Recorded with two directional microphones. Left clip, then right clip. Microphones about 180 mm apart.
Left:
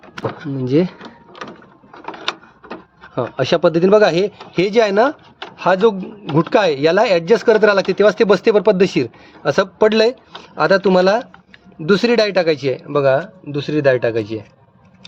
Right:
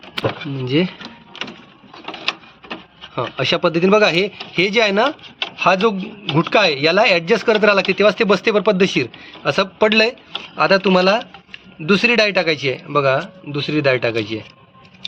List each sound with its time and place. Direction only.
0.6 s a man's voice: 55° left (ahead or behind)
3.2 s a man's voice: 55° left (ahead or behind)